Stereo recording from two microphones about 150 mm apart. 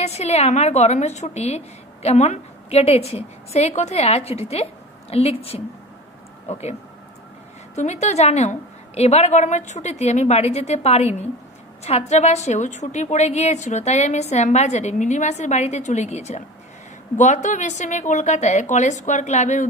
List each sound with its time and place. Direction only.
0.0 s a woman's voice: 45° left (ahead or behind)